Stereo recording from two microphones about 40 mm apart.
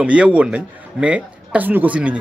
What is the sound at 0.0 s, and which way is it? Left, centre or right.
Speech, right.